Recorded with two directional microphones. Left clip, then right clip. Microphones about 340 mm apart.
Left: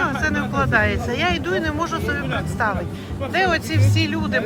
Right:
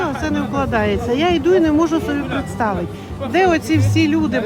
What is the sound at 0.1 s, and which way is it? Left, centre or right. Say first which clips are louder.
Speech: right 1 dB; centre.